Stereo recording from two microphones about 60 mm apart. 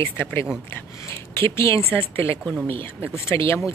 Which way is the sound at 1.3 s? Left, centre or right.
Left.